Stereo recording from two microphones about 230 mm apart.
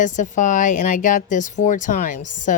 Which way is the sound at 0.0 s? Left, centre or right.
Left.